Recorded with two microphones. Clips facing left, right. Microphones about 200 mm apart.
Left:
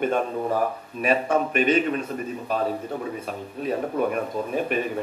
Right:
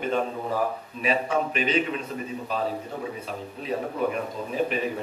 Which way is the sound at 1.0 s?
50° left (ahead or behind).